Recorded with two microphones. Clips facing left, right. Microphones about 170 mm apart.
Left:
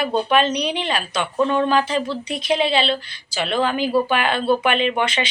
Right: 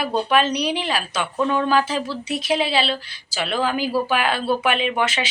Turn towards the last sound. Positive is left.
turn(degrees=-5)  # may be behind; listen again after turning